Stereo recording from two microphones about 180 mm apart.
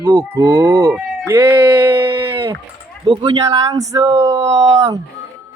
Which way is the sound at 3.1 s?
20° right (ahead or behind).